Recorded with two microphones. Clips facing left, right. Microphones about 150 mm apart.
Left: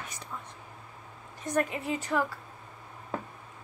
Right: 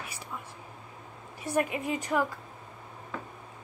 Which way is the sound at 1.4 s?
15° right (ahead or behind).